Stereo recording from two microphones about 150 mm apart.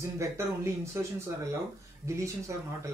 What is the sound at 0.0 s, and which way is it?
Speech, 20° right (ahead or behind).